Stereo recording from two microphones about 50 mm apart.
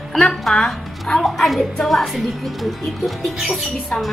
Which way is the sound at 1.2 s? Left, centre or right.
Centre.